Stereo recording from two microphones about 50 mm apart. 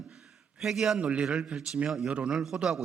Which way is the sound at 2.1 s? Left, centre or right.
Centre.